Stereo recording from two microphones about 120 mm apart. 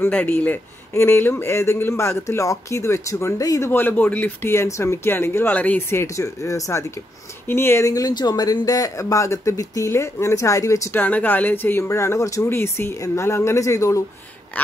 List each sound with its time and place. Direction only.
0.0 s a man's voice: 15° left (ahead or behind)